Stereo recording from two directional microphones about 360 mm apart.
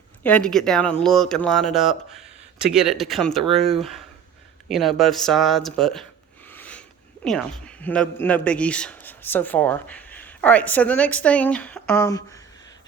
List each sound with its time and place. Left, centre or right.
0.2 s speech: centre
6.5 s a sound: centre
7.3 s speech: centre